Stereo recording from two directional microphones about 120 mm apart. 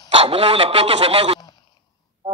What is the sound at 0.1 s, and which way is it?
A man's voice, 50° right (ahead or behind).